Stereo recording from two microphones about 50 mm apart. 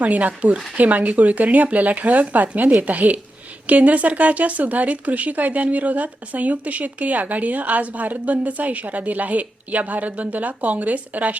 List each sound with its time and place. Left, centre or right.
0.0 s speech: right